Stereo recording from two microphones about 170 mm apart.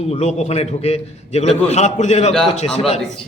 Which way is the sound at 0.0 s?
40° left (ahead or behind).